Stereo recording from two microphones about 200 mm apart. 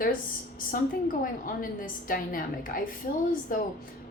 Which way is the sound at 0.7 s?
45° left (ahead or behind).